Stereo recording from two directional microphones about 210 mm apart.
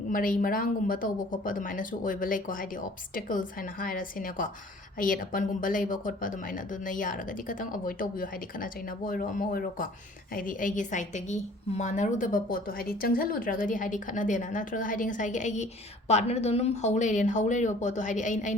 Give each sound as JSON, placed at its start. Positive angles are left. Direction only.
{"t": 0.1, "sound": "a woman's voice", "side_deg": 40}